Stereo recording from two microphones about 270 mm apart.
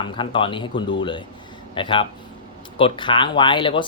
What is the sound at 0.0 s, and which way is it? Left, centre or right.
Speech, centre.